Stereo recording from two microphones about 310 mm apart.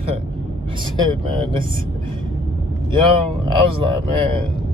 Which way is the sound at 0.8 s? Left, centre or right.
Centre.